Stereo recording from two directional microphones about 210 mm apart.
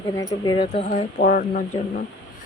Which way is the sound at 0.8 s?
40° left (ahead or behind).